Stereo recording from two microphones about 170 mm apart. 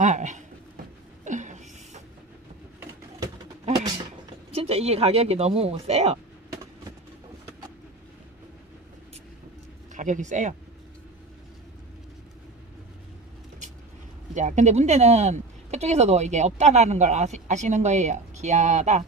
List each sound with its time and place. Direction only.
0.0 s speech: 45° right (ahead or behind)
1.2 s a sound: 45° right (ahead or behind)
4.5 s speech: 35° right (ahead or behind)
9.9 s speech: 45° right (ahead or behind)
14.3 s speech: 45° right (ahead or behind)